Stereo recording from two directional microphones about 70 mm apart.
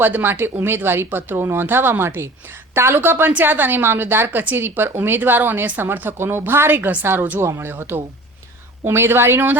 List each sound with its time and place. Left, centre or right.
0.0 s a woman's voice: right